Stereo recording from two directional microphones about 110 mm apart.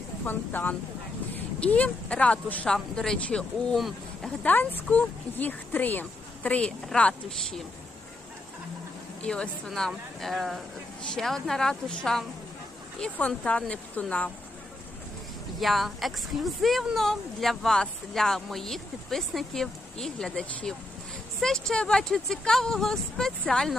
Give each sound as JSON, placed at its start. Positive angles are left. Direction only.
{"t": 0.3, "sound": "speech", "side_deg": 15}
{"t": 4.4, "sound": "speech", "side_deg": 15}
{"t": 9.2, "sound": "a woman's voice", "side_deg": 10}
{"t": 15.6, "sound": "a woman's voice", "side_deg": 0}